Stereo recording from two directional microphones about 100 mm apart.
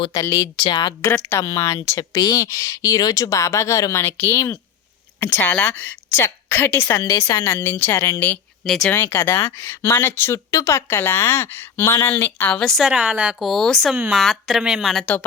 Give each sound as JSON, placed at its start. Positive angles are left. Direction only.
{"t": 0.1, "sound": "a woman's voice", "side_deg": 35}
{"t": 1.1, "sound": "a woman's voice", "side_deg": 30}
{"t": 7.0, "sound": "a woman's voice", "side_deg": 35}
{"t": 7.4, "sound": "speech", "side_deg": 20}
{"t": 8.6, "sound": "speech", "side_deg": 0}
{"t": 8.9, "sound": "speech", "side_deg": 20}
{"t": 12.5, "sound": "a woman's voice", "side_deg": 5}
{"t": 12.8, "sound": "a woman's voice", "side_deg": -5}
{"t": 13.4, "sound": "speech", "side_deg": 5}
{"t": 13.9, "sound": "speech", "side_deg": -5}
{"t": 15.0, "sound": "a woman's voice", "side_deg": 15}